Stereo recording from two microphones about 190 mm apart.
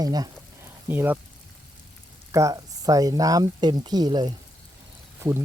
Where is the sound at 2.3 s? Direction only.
15° right (ahead or behind).